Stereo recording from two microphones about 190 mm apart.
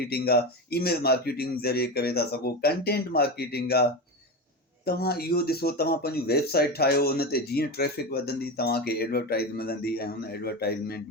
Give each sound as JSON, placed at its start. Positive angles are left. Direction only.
{"t": 0.0, "sound": "speech", "side_deg": 55}
{"t": 4.9, "sound": "speech", "side_deg": 55}